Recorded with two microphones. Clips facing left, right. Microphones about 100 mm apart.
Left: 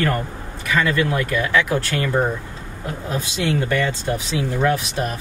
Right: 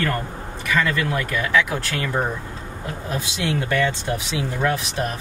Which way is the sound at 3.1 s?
Centre (ahead or behind).